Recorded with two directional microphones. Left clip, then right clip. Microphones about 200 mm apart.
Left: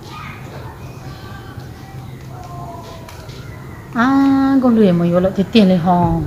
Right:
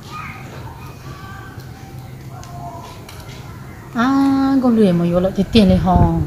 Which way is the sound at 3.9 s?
10° right (ahead or behind).